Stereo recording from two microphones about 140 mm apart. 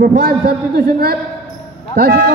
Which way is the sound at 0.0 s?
90° right.